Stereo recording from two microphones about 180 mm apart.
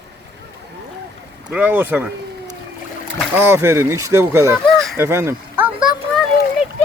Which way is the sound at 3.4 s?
15° right (ahead or behind).